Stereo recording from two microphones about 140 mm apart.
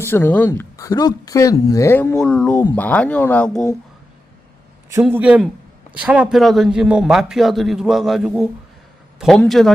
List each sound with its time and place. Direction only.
0.1 s speech: 15° left (ahead or behind)
5.1 s a man's voice: 10° right (ahead or behind)